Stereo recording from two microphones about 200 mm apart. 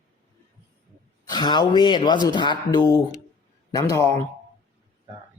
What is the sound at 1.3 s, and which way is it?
A man's voice, 20° left (ahead or behind).